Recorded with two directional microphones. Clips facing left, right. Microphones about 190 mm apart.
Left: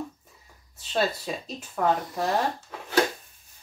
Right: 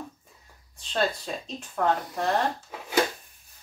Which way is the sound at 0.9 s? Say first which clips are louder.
Left 1 dB; 5° left (ahead or behind).